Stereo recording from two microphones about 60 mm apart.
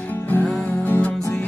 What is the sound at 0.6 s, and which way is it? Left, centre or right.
Music, left.